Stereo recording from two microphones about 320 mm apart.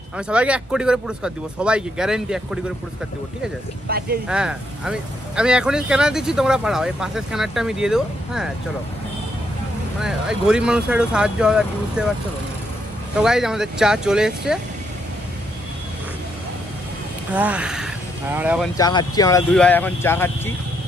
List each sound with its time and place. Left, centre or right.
0.3 s speech: centre
3.9 s speech: right
4.3 s speech: centre
10.0 s speech: centre
13.2 s speech: centre
17.3 s speech: centre
18.8 s speech: centre